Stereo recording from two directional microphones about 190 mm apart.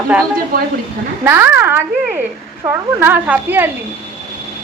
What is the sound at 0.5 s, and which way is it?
Speech, 50° right (ahead or behind).